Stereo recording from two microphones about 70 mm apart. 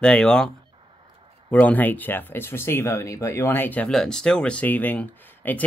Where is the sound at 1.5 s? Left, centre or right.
Left.